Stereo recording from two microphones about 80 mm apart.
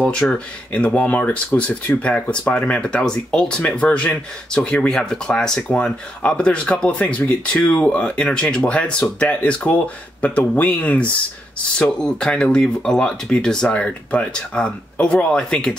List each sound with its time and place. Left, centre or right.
0.0 s speech: centre